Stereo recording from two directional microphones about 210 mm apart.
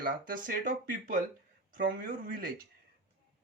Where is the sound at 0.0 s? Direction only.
45° right (ahead or behind).